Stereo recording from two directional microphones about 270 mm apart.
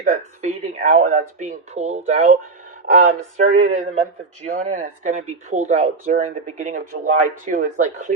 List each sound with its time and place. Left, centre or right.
0.4 s speech: right